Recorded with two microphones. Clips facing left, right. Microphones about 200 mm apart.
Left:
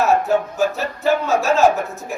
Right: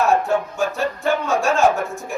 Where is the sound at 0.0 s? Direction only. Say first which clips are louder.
Left 1 dB; centre (ahead or behind).